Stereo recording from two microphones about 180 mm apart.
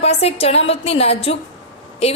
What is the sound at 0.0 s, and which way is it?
A woman's voice, 35° left (ahead or behind).